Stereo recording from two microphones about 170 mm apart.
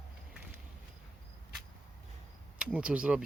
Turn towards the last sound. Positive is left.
turn(degrees=-5)  # may be behind; listen again after turning